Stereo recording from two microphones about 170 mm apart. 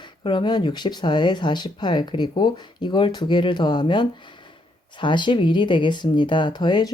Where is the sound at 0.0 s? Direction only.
30° left (ahead or behind).